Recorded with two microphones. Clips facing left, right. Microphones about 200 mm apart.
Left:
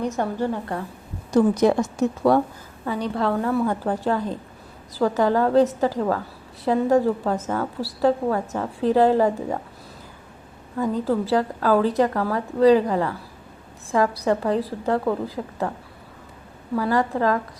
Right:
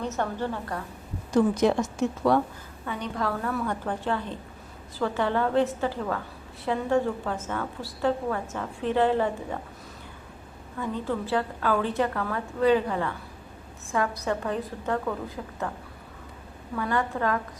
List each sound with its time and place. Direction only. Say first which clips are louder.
0.0 s a woman's voice: left 5 dB; 15° left (ahead or behind)
1.3 s a woman's voice: left 4 dB; 40° left (ahead or behind)
10.8 s a woman's voice: left 7 dB; 40° left (ahead or behind)
16.7 s a woman's voice: left 6 dB; 35° left (ahead or behind)